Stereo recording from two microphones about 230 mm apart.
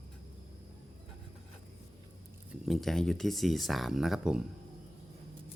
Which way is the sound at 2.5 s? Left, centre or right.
Centre.